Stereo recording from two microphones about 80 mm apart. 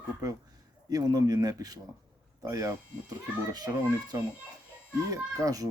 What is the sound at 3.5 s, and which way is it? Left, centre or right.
A child's voice, right.